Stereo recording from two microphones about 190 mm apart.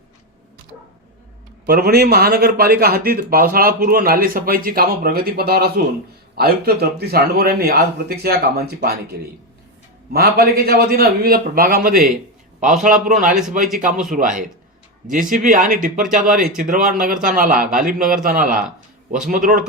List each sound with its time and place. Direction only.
1.6 s a man's voice: 50° right (ahead or behind)
10.1 s a man's voice: 55° right (ahead or behind)
15.1 s a man's voice: 45° right (ahead or behind)